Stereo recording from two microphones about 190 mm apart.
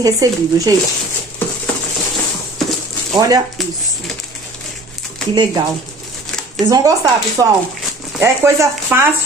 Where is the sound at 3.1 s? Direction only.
20° right (ahead or behind).